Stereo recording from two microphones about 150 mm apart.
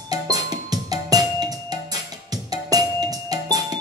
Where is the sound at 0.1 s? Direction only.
25° right (ahead or behind).